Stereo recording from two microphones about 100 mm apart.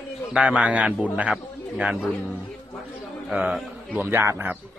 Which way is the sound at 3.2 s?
10° right (ahead or behind).